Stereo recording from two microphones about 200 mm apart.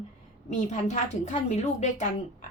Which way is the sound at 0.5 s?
35° left (ahead or behind).